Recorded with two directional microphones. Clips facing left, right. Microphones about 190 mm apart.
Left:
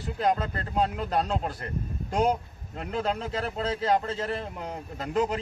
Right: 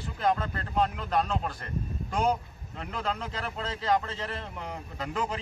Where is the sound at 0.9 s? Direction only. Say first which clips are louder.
Left 1 dB; 35° left (ahead or behind).